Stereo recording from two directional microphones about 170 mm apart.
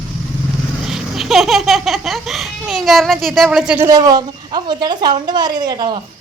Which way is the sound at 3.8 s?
20° right (ahead or behind).